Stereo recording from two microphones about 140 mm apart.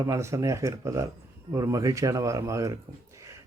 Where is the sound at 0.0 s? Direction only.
20° right (ahead or behind).